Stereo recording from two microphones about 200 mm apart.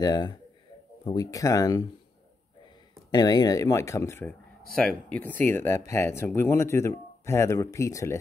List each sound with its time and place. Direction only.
0.0 s speech: 20° left (ahead or behind)
3.1 s speech: 20° left (ahead or behind)